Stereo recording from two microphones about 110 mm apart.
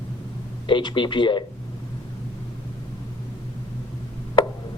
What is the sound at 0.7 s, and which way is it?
Speech, 45° left (ahead or behind).